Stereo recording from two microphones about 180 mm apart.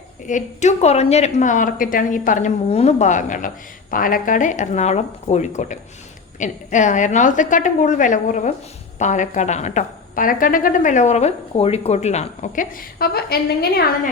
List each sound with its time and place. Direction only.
0.3 s a woman's voice: 40° left (ahead or behind); by 14.1 s 60° left (ahead or behind)